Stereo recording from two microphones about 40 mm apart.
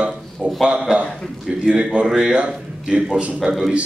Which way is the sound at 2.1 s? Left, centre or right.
Centre.